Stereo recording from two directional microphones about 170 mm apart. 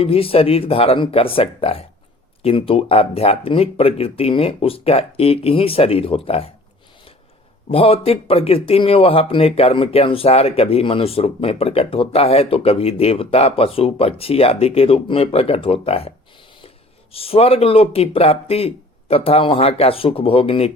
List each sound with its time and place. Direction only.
0.0 s speech: 35° left (ahead or behind)
7.7 s speech: 35° left (ahead or behind)